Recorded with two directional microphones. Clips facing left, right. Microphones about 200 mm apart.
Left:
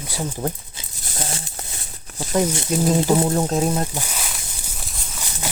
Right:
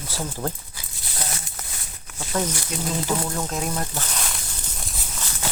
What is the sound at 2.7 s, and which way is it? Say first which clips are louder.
Speech: left 10 dB; 40° left (ahead or behind).